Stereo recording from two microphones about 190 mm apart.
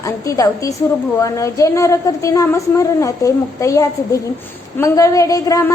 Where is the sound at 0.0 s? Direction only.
15° left (ahead or behind).